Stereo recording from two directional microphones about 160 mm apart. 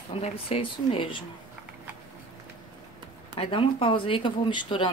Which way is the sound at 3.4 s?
35° left (ahead or behind).